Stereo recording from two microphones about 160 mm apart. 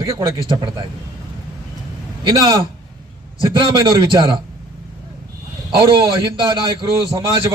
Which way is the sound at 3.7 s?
30° right (ahead or behind).